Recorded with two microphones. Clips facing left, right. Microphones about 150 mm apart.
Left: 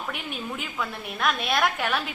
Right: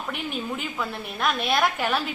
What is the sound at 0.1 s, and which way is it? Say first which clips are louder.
A woman's voice: right 3 dB; centre (ahead or behind).